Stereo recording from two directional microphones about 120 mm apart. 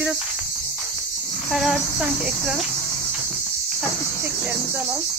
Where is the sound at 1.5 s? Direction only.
Centre (ahead or behind).